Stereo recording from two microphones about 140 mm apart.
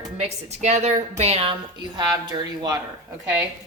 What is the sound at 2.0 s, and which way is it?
Speech, 30° right (ahead or behind).